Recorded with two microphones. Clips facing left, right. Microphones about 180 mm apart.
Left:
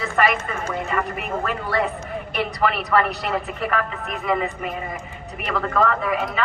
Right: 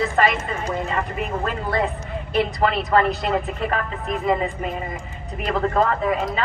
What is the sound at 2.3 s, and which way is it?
A woman's voice, 30° right (ahead or behind).